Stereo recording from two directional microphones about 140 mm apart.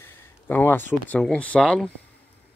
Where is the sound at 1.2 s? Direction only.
10° left (ahead or behind).